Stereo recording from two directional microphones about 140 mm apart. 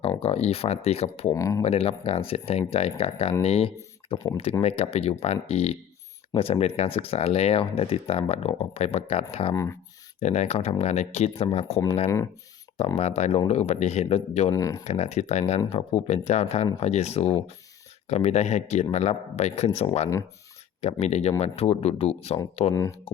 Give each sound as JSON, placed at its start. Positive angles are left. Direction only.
{"t": 0.0, "sound": "speech", "side_deg": 45}
{"t": 1.3, "sound": "speech", "side_deg": 20}
{"t": 1.6, "sound": "speech", "side_deg": 45}
{"t": 12.0, "sound": "speech", "side_deg": 20}
{"t": 13.0, "sound": "speech", "side_deg": 50}
{"t": 14.5, "sound": "speech", "side_deg": 25}
{"t": 14.8, "sound": "speech", "side_deg": 50}